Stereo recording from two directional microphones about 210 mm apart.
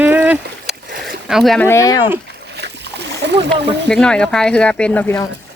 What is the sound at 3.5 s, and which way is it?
Speech, 5° left (ahead or behind).